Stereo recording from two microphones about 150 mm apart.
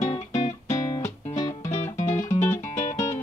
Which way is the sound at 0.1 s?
50° left (ahead or behind).